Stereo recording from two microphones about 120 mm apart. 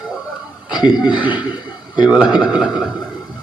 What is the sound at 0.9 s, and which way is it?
Speech, 40° left (ahead or behind).